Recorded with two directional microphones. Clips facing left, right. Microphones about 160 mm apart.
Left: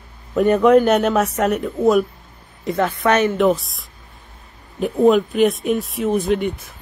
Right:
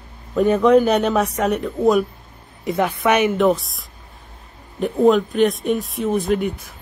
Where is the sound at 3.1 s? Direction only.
10° right (ahead or behind).